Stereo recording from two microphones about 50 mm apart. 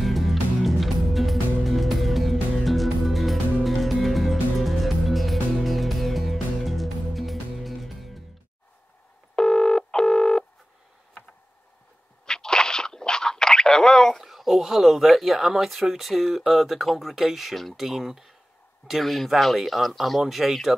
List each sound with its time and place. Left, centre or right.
0.0 s music: centre
9.3 s telephone: centre
12.3 s a sound: centre
14.2 s speech: centre